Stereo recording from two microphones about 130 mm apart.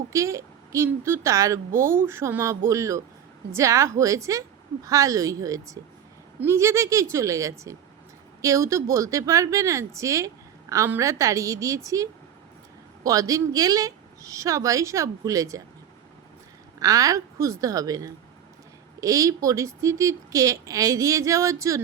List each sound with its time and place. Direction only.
0.1 s speech: 25° right (ahead or behind)
13.1 s speech: 25° right (ahead or behind)
16.8 s speech: 25° right (ahead or behind)